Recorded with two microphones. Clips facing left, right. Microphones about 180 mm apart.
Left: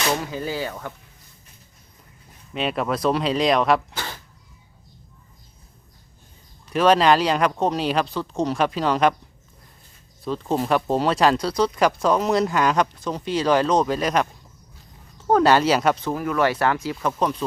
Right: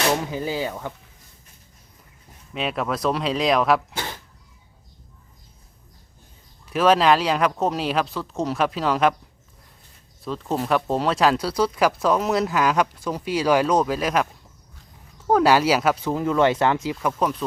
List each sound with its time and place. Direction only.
0.3 s speech: 15° right (ahead or behind)
2.5 s speech: centre (ahead or behind)
6.7 s speech: 5° right (ahead or behind)
10.2 s speech: centre (ahead or behind)
15.3 s speech: 5° right (ahead or behind)
16.1 s speech: 20° right (ahead or behind)
17.0 s speech: 5° right (ahead or behind)